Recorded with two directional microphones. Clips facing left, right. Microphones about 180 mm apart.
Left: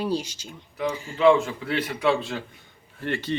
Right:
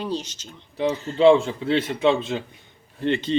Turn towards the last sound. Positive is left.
turn(degrees=-20)  # may be behind; listen again after turning